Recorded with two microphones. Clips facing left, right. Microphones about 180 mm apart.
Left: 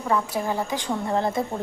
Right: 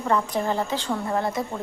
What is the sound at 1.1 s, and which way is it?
Speech, 25° left (ahead or behind).